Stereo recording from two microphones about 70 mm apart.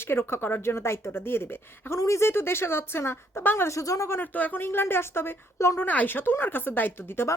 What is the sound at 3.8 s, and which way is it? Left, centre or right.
Speech, left.